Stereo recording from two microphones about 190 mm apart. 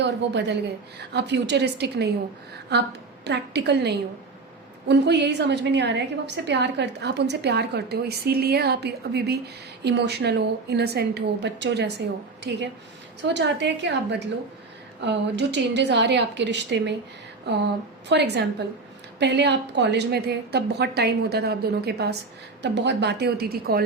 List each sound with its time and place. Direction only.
0.0 s a woman's voice: 65° right (ahead or behind)
18.1 s a woman's voice: 65° right (ahead or behind)